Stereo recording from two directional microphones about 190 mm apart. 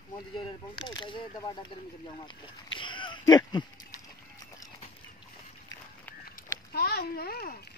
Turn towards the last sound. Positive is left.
turn(degrees=55)  # may be behind; listen again after turning